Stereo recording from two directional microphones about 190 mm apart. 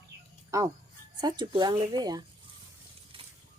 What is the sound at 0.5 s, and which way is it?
Speech, 15° right (ahead or behind).